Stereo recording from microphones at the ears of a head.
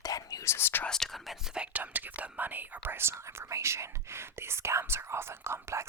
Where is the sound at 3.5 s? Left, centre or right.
Right.